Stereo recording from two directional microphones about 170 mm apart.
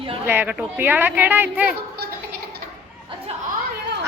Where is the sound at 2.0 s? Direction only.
65° right (ahead or behind).